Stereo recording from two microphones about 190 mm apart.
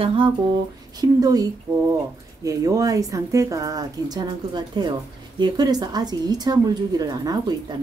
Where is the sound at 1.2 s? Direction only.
20° right (ahead or behind).